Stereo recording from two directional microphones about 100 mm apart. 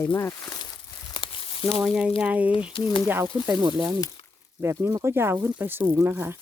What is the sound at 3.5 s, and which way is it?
Speech, 50° right (ahead or behind).